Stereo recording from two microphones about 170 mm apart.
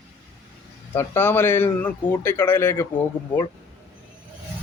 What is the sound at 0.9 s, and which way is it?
Speech, 15° left (ahead or behind).